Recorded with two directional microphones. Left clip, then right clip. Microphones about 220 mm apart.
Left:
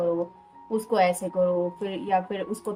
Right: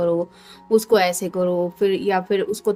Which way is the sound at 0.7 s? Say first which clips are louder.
Right 6 dB; 45° right (ahead or behind).